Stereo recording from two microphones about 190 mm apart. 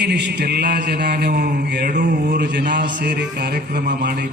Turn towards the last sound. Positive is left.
turn(degrees=-55)  # may be behind; listen again after turning